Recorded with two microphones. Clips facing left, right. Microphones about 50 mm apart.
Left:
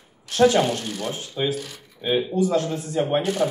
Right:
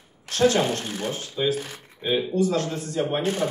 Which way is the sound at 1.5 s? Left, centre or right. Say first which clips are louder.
Right 1 dB; right.